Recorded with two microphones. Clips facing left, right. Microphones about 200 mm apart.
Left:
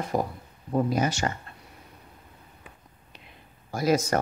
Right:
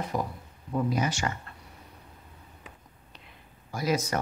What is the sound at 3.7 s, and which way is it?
Speech, 45° left (ahead or behind).